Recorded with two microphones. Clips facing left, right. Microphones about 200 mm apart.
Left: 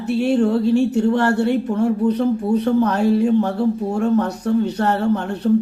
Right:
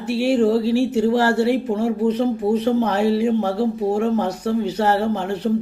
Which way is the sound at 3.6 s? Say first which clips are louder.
Even; 30° right (ahead or behind).